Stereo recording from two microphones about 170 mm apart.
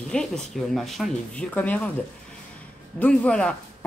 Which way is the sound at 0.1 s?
5° left (ahead or behind).